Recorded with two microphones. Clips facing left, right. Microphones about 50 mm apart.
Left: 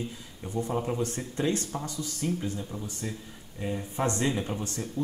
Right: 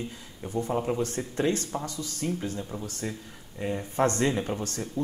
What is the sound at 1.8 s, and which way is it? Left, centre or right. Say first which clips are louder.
Speech: even; right.